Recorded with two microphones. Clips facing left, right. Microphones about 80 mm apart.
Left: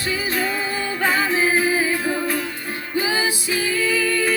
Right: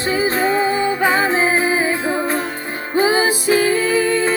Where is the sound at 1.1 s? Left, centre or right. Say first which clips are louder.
Right 3 dB; right.